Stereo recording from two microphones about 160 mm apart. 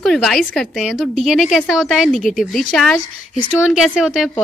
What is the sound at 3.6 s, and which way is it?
Speech, 5° right (ahead or behind).